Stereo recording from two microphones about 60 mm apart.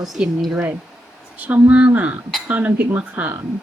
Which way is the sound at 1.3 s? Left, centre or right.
Right.